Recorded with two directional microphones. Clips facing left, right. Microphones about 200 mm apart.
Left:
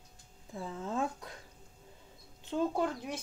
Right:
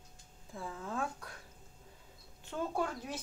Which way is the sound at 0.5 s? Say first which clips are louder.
Left 4 dB; 20° left (ahead or behind).